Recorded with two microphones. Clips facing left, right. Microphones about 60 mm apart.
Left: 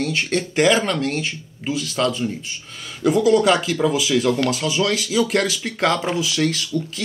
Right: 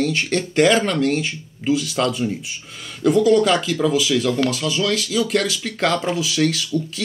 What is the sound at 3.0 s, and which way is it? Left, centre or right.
Speech, centre.